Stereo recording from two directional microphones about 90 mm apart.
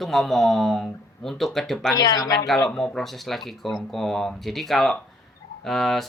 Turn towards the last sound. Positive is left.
turn(degrees=0)  # may be behind; listen again after turning